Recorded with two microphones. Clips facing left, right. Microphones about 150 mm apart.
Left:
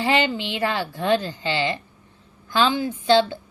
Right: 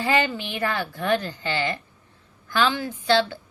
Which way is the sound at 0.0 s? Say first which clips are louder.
Left 2 dB; 20° left (ahead or behind).